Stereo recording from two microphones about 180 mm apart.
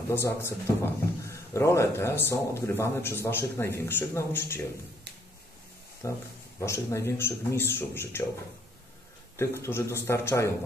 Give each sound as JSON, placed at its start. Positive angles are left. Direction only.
{"t": 0.1, "sound": "speech", "side_deg": 15}
{"t": 6.0, "sound": "speech", "side_deg": 15}
{"t": 9.4, "sound": "speech", "side_deg": 15}